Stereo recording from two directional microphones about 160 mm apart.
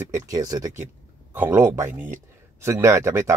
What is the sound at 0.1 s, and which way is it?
Speech, 20° right (ahead or behind).